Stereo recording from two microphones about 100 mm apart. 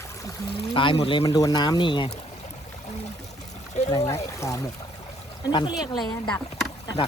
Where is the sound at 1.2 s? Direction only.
35° left (ahead or behind); by 2.1 s 55° left (ahead or behind).